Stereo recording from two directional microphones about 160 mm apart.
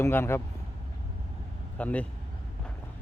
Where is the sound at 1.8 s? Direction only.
10° left (ahead or behind).